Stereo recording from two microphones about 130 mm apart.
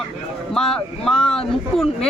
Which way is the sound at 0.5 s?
5° left (ahead or behind).